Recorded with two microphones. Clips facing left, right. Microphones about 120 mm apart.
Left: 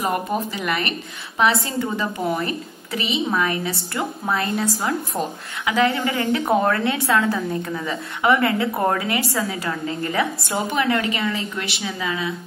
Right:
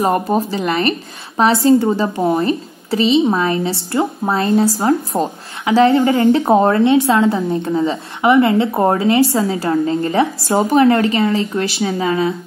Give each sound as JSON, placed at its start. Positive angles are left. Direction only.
{"t": 0.0, "sound": "a woman's voice", "side_deg": -35}